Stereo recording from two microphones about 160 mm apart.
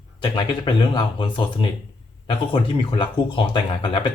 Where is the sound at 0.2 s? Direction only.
30° left (ahead or behind).